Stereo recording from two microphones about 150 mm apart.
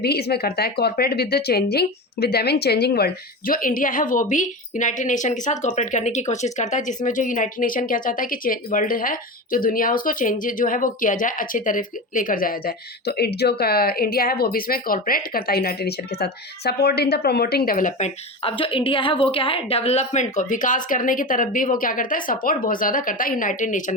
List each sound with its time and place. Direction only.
0.0 s speech: 90° left; by 18.5 s 50° left (ahead or behind)
18.5 s speech: 35° left (ahead or behind); by 23.9 s 55° left (ahead or behind)